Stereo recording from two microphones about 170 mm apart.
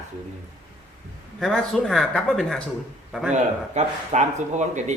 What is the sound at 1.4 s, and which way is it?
A man's voice, 5° left (ahead or behind).